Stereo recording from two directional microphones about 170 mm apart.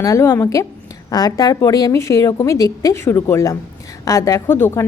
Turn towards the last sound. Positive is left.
turn(degrees=15)  # may be behind; listen again after turning